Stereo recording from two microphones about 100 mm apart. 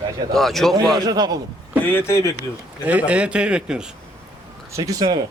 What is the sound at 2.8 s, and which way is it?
A man's voice, 15° right (ahead or behind).